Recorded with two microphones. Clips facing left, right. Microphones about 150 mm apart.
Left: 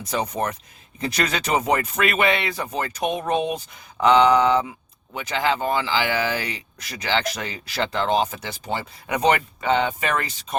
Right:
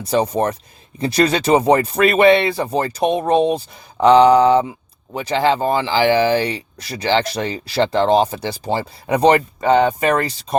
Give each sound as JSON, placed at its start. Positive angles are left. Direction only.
{"t": 0.0, "sound": "speech", "side_deg": -30}